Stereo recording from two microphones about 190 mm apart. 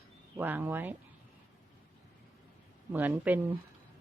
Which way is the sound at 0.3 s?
10° right (ahead or behind).